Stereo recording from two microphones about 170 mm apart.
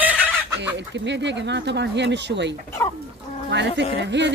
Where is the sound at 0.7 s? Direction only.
90° right.